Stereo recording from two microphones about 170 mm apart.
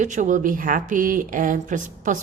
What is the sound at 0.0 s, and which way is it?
A woman's voice, 45° right (ahead or behind).